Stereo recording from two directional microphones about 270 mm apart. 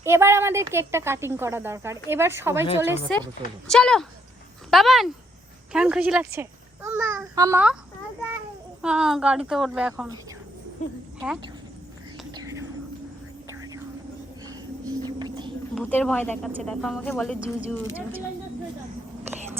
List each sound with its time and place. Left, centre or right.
0.0 s speech: centre
3.7 s speech: centre
8.8 s speech: centre
10.8 s speech: left
12.3 s whispering: centre
13.5 s vehicle: centre
14.4 s a sound: centre
15.7 s speech: centre